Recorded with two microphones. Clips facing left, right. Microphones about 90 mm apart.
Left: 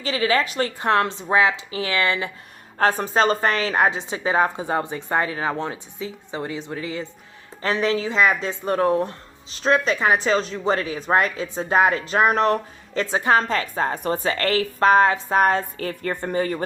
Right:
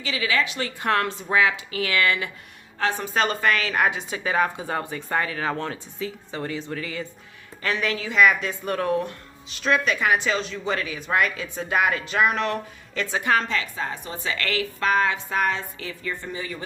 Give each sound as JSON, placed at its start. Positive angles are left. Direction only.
{"t": 0.0, "sound": "speech", "side_deg": 40}
{"t": 0.8, "sound": "a woman's voice", "side_deg": 25}
{"t": 2.7, "sound": "a woman's voice", "side_deg": 40}